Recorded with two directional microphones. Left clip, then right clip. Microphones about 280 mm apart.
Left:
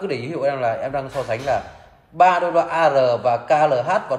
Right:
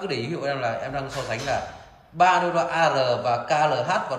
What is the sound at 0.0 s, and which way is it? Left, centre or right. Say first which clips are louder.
A man's voice: left 5 dB; centre.